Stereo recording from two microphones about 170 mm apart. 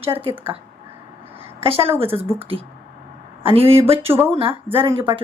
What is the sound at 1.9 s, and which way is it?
Speech, 35° right (ahead or behind).